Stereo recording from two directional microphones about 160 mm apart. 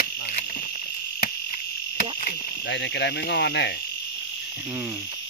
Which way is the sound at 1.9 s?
85° left.